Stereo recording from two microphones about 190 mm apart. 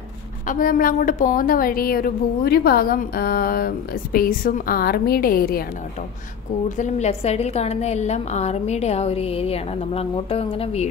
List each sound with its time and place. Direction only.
0.5 s a woman's voice: 45° left (ahead or behind)
6.8 s a woman's voice: 35° left (ahead or behind)